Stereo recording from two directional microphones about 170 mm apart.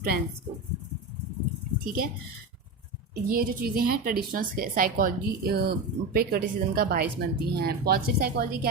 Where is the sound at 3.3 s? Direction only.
60° right (ahead or behind).